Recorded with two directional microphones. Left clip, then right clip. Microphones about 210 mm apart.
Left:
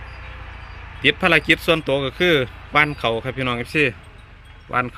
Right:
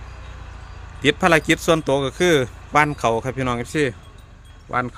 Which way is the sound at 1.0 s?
10° right (ahead or behind).